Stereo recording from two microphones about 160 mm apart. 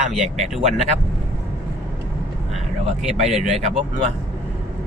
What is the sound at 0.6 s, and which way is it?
Speech, 45° right (ahead or behind).